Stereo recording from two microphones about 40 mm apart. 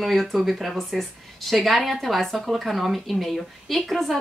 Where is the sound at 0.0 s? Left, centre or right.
Centre.